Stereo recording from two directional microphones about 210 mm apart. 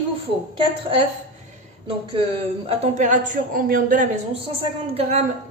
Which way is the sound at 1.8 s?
25° right (ahead or behind).